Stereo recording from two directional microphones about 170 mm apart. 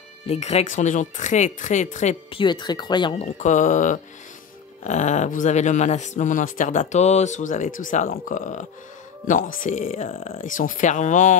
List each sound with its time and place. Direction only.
0.3 s speech: 40° left (ahead or behind)
2.3 s speech: 25° left (ahead or behind)
3.3 s speech: 45° left (ahead or behind)